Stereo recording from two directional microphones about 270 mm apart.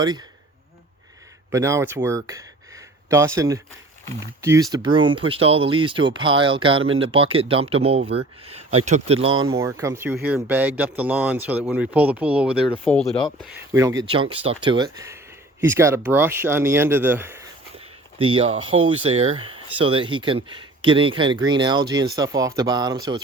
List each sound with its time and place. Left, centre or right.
0.0 s speech: centre
1.5 s a man's voice: centre
12.6 s a man's voice: centre
14.1 s speech: centre
17.7 s a sound: centre
18.8 s speech: centre